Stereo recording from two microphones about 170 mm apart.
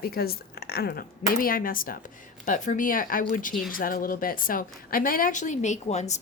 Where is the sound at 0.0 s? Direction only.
65° left (ahead or behind).